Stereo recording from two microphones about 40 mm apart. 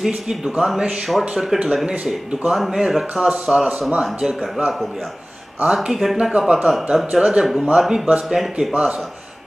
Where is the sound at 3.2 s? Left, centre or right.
Right.